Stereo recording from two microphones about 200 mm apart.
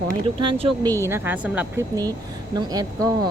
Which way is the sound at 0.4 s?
25° right (ahead or behind).